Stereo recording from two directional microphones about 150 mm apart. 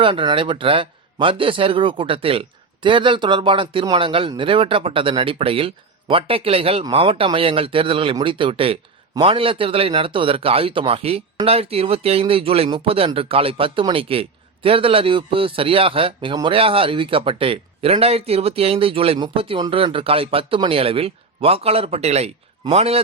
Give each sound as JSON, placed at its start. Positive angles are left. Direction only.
{"t": 0.0, "sound": "a man's voice", "side_deg": -35}